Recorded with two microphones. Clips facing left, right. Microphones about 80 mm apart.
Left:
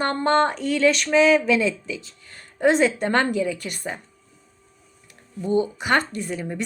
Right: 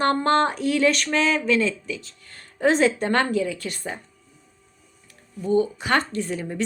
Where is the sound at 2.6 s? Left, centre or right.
Centre.